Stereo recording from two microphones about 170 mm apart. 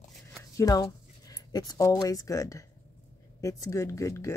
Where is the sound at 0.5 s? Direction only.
20° left (ahead or behind).